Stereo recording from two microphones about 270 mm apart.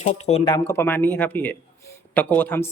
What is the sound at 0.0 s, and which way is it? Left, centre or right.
Speech, left.